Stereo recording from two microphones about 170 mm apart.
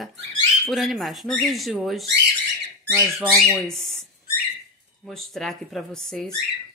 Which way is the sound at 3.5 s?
5° left (ahead or behind).